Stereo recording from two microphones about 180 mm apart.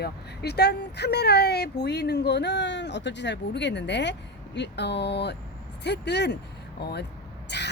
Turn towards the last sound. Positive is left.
turn(degrees=70)  # may be behind; listen again after turning